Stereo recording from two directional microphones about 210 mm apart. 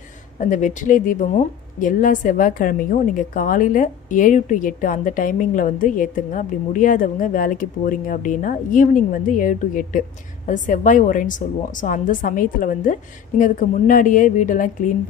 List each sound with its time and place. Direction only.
0.4 s a woman's voice: 35° left (ahead or behind)